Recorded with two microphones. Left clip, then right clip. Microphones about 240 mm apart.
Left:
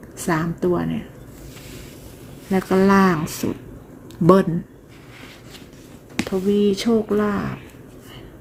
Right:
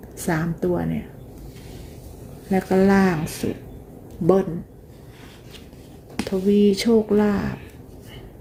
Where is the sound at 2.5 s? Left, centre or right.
Centre.